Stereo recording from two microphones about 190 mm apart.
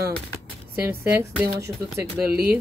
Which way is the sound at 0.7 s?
10° right (ahead or behind).